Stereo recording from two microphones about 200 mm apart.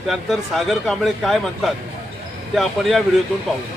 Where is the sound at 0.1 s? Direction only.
Centre (ahead or behind).